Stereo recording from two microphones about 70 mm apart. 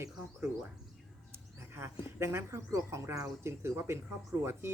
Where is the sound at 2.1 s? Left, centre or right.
Right.